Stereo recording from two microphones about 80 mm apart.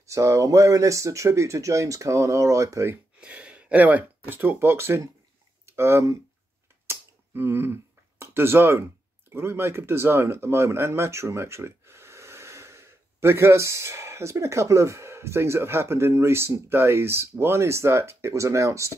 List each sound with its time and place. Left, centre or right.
0.0 s speech: right
3.2 s speech: centre; by 6.1 s right
6.9 s a sound: right
9.3 s speech: right